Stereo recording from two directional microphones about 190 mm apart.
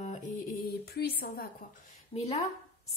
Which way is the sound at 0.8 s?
55° left (ahead or behind).